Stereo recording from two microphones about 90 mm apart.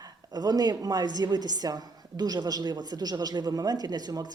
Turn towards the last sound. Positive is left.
turn(degrees=-50)  # may be behind; listen again after turning